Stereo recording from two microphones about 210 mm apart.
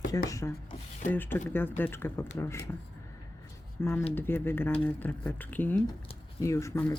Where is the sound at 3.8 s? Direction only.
10° left (ahead or behind).